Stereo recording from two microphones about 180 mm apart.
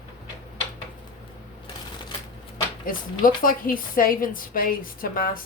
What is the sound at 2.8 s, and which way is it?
A woman's voice, 50° left (ahead or behind).